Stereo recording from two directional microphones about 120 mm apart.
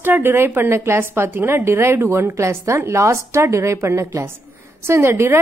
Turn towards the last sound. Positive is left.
turn(degrees=-20)  # may be behind; listen again after turning